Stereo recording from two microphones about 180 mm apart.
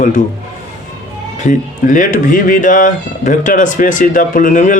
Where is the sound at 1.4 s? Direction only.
45° left (ahead or behind).